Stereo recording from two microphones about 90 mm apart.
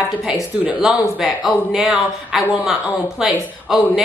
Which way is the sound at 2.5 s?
15° right (ahead or behind).